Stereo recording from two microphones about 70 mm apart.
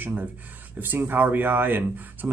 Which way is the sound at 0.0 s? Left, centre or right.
Right.